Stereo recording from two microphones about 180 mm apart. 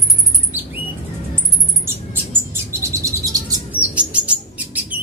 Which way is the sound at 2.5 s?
15° right (ahead or behind).